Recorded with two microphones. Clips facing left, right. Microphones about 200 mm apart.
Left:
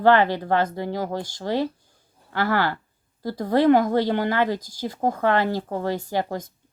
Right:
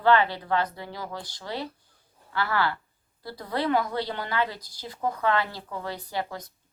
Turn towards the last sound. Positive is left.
turn(degrees=45)  # may be behind; listen again after turning